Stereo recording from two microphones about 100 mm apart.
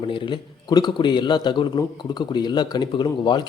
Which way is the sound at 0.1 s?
50° left (ahead or behind).